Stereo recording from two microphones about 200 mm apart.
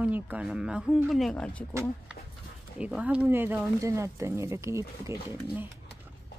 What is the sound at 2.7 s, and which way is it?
Speech, 5° right (ahead or behind).